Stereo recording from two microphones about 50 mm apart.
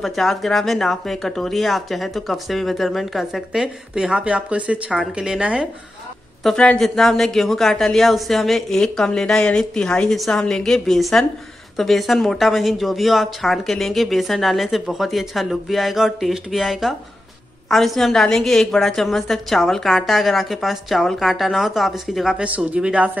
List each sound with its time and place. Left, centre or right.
0.0 s speech: centre
3.5 s speech: centre
6.4 s speech: centre
22.4 s speech: right